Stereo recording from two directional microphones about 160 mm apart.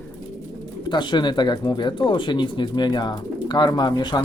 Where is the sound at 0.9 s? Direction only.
30° left (ahead or behind).